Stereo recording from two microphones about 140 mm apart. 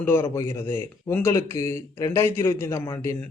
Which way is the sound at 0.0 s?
15° left (ahead or behind).